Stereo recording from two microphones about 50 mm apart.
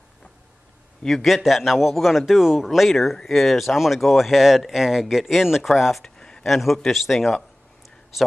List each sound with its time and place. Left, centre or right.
1.0 s speech: centre
2.9 s speech: centre
6.0 s a sound: centre
6.4 s speech: centre